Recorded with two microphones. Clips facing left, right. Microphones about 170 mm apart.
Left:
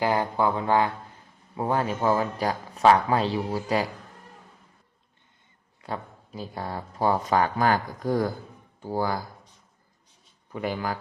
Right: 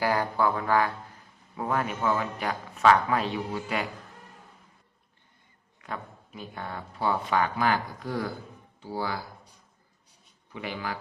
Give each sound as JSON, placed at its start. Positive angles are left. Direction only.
{"t": 0.0, "sound": "speech", "side_deg": 20}
{"t": 5.8, "sound": "speech", "side_deg": 35}
{"t": 10.5, "sound": "speech", "side_deg": 45}